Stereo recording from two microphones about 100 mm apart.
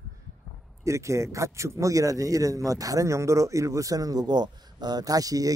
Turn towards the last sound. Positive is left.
turn(degrees=-35)  # may be behind; listen again after turning